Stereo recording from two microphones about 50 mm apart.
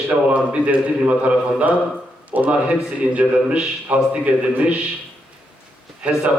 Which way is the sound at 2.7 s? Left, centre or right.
Right.